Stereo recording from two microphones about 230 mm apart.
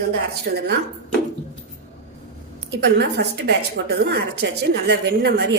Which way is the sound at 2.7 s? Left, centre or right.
Right.